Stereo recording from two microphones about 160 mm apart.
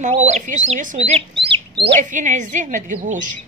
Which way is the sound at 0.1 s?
45° right (ahead or behind).